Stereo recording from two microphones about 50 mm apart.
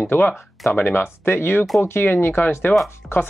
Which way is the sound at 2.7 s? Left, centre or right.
Left.